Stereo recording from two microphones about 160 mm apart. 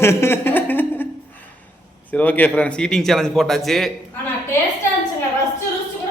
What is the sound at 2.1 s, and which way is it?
A man's voice, 10° left (ahead or behind).